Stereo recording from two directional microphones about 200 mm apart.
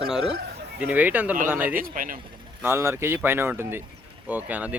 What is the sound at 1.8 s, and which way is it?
Speech, 45° right (ahead or behind).